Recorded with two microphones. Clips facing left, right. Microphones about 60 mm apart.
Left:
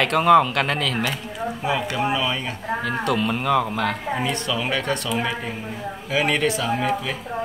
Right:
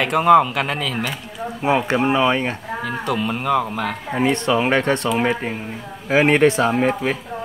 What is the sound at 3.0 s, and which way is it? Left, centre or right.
Speech, centre.